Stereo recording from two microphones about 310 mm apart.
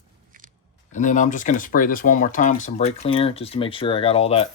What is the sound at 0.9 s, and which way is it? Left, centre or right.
Speech, left.